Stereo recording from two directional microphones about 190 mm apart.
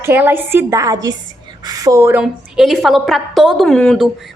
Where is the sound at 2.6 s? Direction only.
Centre (ahead or behind).